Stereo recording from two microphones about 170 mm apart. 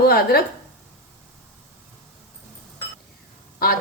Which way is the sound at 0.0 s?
65° left (ahead or behind).